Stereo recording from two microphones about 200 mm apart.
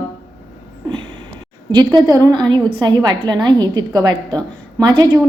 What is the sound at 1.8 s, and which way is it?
A woman's voice, 15° right (ahead or behind).